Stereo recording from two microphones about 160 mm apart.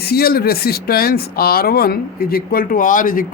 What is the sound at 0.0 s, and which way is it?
Speech, 75° left (ahead or behind).